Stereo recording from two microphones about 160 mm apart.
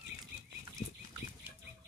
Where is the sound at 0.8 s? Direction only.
60° left (ahead or behind).